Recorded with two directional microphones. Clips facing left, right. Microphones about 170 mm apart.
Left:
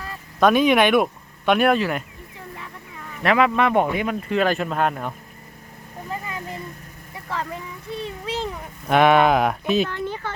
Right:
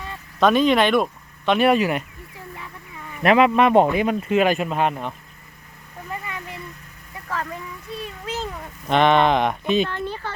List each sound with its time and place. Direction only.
0.0 s vehicle: centre (ahead or behind)
1.6 s speech: 5° right (ahead or behind)
3.2 s speech: 20° right (ahead or behind)
4.8 s speech: centre (ahead or behind)
6.1 s vehicle: 30° left (ahead or behind)
7.9 s a child's voice: 25° left (ahead or behind)
8.9 s speech: 5° left (ahead or behind)